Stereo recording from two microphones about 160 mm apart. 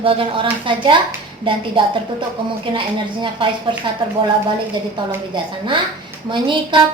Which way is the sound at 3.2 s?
30° right (ahead or behind).